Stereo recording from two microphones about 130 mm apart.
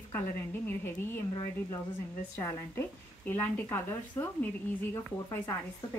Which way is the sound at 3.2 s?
15° left (ahead or behind).